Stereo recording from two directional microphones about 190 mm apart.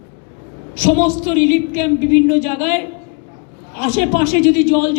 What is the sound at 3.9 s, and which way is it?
A woman's voice, 40° left (ahead or behind).